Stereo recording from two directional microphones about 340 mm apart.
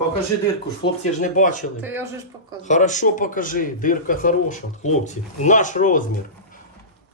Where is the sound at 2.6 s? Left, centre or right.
Left.